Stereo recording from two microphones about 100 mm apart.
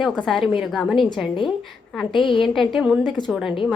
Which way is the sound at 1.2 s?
10° right (ahead or behind).